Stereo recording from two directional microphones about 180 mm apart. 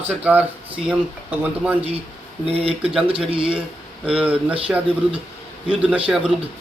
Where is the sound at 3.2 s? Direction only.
30° right (ahead or behind).